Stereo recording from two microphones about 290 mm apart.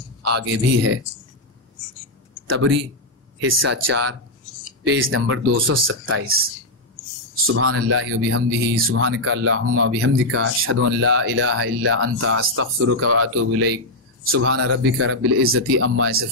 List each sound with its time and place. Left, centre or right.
0.2 s speech: right
2.5 s speech: right
3.8 s speech: right
4.8 s speech: right
7.4 s speech: right